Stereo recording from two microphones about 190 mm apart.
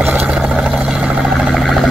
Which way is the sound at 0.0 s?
5° right (ahead or behind).